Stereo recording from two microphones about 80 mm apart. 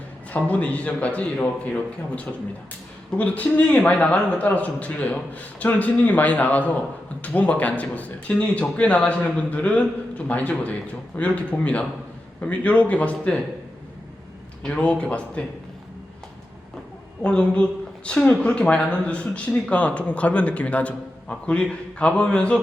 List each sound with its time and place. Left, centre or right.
0.3 s a man's voice: centre
14.6 s speech: centre
17.2 s speech: centre